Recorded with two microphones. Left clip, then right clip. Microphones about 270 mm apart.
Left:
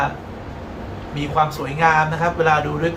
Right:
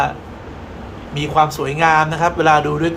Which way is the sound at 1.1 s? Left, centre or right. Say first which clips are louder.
Right 4 dB; right.